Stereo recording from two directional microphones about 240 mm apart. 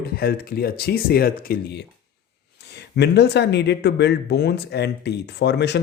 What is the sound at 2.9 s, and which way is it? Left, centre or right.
Speech, left.